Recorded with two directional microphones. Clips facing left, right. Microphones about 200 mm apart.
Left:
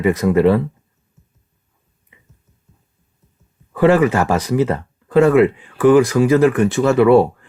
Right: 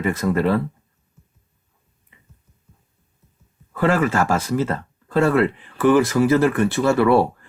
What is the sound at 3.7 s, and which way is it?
Speech, 20° left (ahead or behind).